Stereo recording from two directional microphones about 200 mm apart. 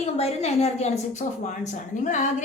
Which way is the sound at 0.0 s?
30° left (ahead or behind).